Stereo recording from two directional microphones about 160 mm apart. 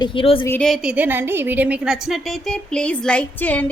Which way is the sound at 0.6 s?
5° right (ahead or behind).